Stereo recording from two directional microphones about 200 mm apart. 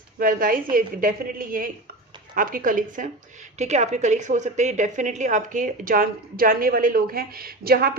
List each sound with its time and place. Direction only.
0.2 s a woman's voice: 45° right (ahead or behind)